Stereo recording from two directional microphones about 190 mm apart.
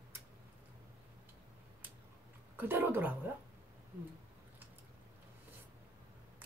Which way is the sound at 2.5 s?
10° right (ahead or behind).